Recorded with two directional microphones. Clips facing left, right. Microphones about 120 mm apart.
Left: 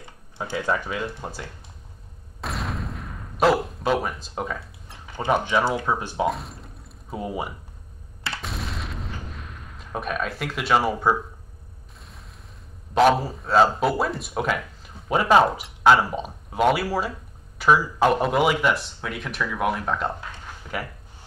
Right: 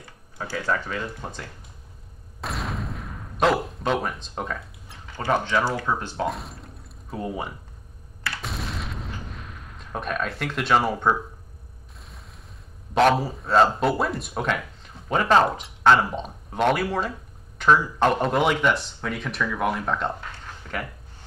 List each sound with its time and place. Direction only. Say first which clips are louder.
0.0 s speech: left 2 dB; 20° left (ahead or behind)
2.4 s a sound: even; centre (ahead or behind)
5.1 s speech: left 1 dB; 15° left (ahead or behind)
6.2 s speech: left 3 dB; centre (ahead or behind)
8.4 s artillery fire: right 1 dB; centre (ahead or behind)
12.9 s speech: left 1 dB; centre (ahead or behind)
20.2 s a sound: left 1 dB; 10° left (ahead or behind)